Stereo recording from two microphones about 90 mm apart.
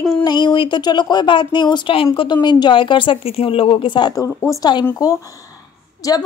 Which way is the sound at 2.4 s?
55° left (ahead or behind).